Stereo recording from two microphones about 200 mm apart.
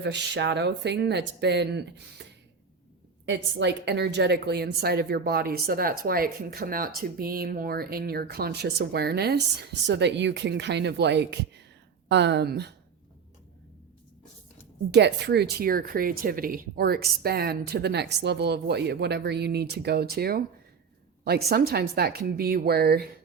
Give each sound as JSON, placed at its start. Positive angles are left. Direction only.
{"t": 0.0, "sound": "speech", "side_deg": -60}
{"t": 3.2, "sound": "a woman's voice", "side_deg": -60}
{"t": 14.8, "sound": "a woman's voice", "side_deg": -55}